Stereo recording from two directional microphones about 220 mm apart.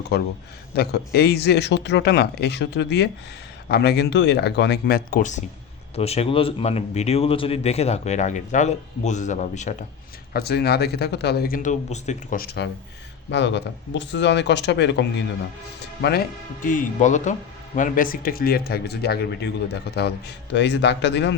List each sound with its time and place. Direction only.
0.1 s speech: 50° left (ahead or behind)
10.3 s speech: 45° left (ahead or behind)
16.6 s speech: 35° left (ahead or behind)